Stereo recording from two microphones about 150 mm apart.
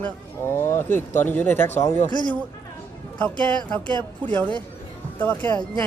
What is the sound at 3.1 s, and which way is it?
Speech, 10° left (ahead or behind).